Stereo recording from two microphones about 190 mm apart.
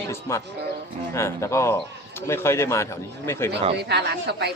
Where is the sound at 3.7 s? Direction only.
60° right (ahead or behind).